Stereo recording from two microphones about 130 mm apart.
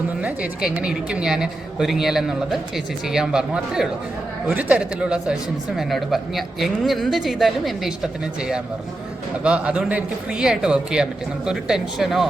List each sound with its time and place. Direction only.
0.2 s speech: 10° right (ahead or behind)